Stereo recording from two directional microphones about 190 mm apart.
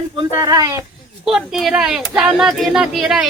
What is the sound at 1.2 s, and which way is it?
Speech, 5° right (ahead or behind).